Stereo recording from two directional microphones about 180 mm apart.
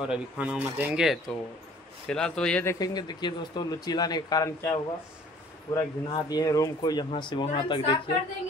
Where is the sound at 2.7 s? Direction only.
20° left (ahead or behind).